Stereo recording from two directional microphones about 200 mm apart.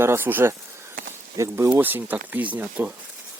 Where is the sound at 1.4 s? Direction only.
15° right (ahead or behind).